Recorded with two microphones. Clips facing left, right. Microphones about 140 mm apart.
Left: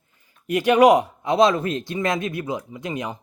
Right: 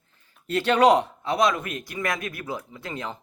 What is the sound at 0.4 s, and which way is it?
Speech, 10° left (ahead or behind).